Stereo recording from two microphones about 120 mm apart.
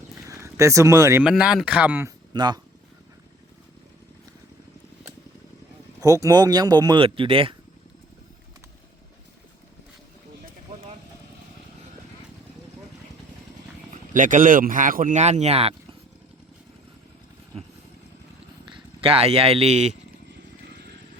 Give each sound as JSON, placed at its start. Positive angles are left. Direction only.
{"t": 0.3, "sound": "speech", "side_deg": -25}
{"t": 1.2, "sound": "speech", "side_deg": -5}
{"t": 2.0, "sound": "speech", "side_deg": -35}
{"t": 6.0, "sound": "speech", "side_deg": -30}
{"t": 13.9, "sound": "speech", "side_deg": -90}
{"t": 18.7, "sound": "speech", "side_deg": -50}